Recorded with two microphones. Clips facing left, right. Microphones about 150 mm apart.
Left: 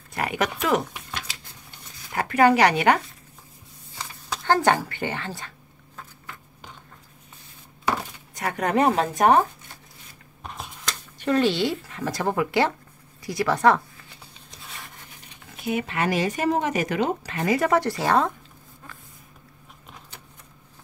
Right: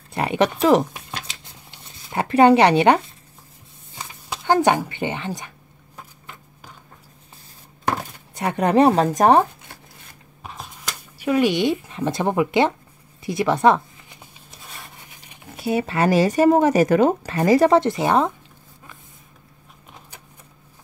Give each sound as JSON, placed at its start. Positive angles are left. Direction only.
{"t": 0.1, "sound": "speech", "side_deg": -25}
{"t": 3.9, "sound": "speech", "side_deg": -15}
{"t": 5.9, "sound": "a sound", "side_deg": -15}
{"t": 8.4, "sound": "speech", "side_deg": -30}
{"t": 10.4, "sound": "a sound", "side_deg": -5}
{"t": 15.5, "sound": "speech", "side_deg": -35}
{"t": 17.7, "sound": "speech", "side_deg": -20}